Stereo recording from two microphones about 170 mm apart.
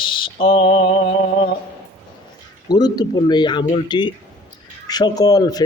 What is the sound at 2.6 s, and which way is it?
Speech, 25° left (ahead or behind).